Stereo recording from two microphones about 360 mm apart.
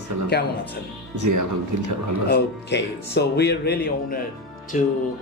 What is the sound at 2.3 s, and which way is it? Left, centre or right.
Speech, left.